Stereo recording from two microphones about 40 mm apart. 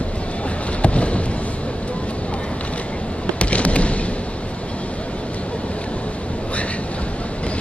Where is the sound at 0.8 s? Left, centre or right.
Left.